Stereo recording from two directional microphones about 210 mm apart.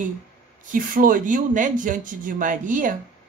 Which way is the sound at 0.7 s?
40° right (ahead or behind).